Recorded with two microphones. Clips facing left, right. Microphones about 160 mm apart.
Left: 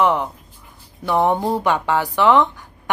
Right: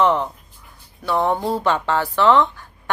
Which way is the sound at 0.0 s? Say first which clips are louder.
Even; 10° left (ahead or behind).